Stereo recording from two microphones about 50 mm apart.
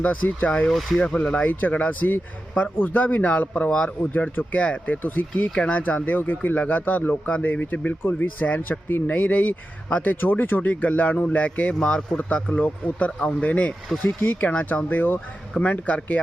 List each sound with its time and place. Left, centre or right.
0.0 s speech: left
0.7 s speech: centre
1.0 s speech: left
9.1 s speech: left